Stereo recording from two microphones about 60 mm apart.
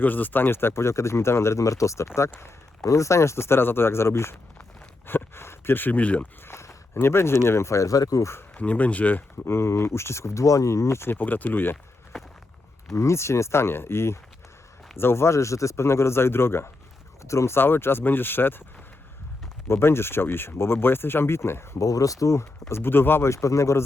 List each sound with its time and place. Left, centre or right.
0.0 s speech: left
6.4 s speech: left
8.5 s speech: left
9.5 s speech: left
11.1 s speech: left
12.9 s speech: left
19.6 s speech: left
21.8 s speech: left
22.7 s speech: left
23.3 s a man's voice: left